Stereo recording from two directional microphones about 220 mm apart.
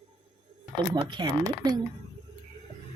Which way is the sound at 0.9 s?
20° right (ahead or behind).